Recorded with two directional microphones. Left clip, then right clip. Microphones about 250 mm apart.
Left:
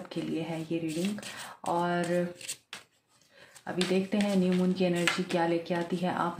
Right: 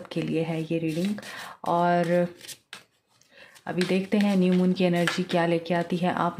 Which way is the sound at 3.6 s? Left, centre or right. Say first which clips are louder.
Right 3 dB; right.